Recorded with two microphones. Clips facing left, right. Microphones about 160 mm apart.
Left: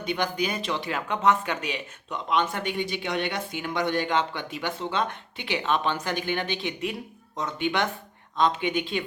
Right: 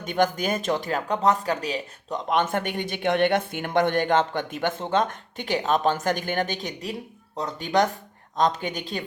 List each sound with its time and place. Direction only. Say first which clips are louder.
0.0 s a woman's voice: right 4 dB; 45° right (ahead or behind)